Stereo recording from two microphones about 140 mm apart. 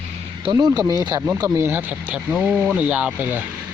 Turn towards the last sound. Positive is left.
turn(degrees=-10)  # may be behind; listen again after turning